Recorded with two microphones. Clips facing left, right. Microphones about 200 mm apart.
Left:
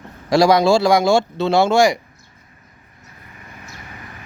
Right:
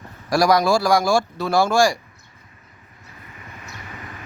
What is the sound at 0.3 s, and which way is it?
Speech, 25° left (ahead or behind).